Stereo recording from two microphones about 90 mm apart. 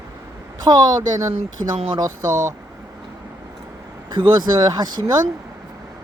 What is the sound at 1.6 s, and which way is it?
Speech, 65° right (ahead or behind).